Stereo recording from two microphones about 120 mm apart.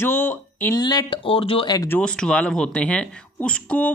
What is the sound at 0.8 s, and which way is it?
Speech, 35° left (ahead or behind).